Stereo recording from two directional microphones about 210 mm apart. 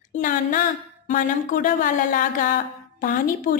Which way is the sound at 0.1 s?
40° left (ahead or behind).